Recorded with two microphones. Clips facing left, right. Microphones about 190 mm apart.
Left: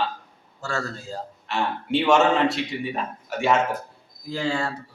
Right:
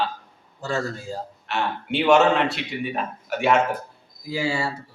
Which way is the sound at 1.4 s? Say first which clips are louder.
Even; centre (ahead or behind).